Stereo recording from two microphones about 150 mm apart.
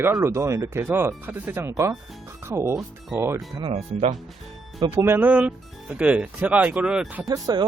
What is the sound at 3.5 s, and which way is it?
Speech, 35° right (ahead or behind).